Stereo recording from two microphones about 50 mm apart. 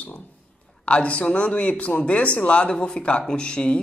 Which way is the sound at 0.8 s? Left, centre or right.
Left.